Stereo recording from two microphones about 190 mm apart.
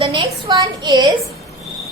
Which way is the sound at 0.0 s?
25° right (ahead or behind).